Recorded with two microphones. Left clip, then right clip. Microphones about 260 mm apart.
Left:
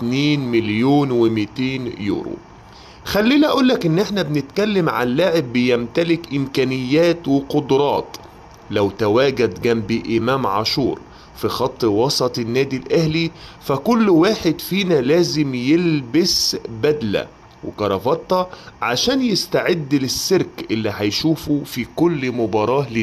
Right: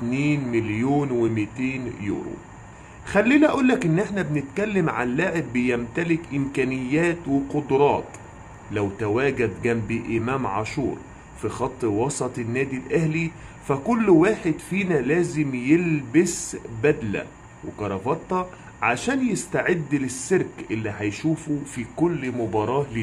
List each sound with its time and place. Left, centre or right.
0.1 s speech: left